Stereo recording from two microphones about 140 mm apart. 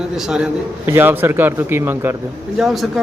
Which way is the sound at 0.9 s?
15° right (ahead or behind).